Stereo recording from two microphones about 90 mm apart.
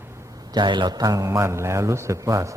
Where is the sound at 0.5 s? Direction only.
60° right (ahead or behind); by 2.6 s 35° right (ahead or behind).